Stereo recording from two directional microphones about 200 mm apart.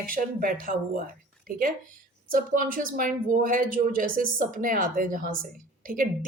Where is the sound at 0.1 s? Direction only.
45° right (ahead or behind).